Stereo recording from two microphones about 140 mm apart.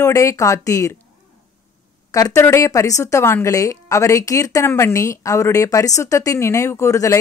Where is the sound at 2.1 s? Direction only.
20° left (ahead or behind).